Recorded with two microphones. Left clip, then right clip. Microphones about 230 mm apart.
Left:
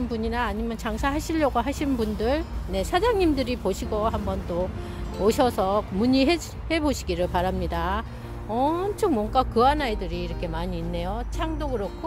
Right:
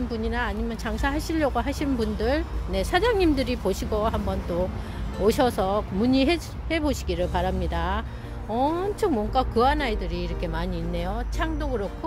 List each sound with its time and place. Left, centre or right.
0.1 s speech: centre